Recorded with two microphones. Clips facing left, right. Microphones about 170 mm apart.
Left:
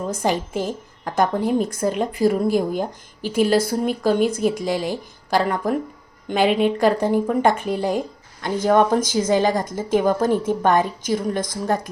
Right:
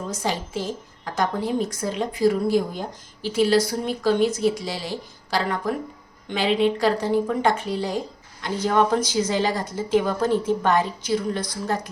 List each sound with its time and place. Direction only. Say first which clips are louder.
0.1 s a woman's voice: left 4 dB; 55° left (ahead or behind)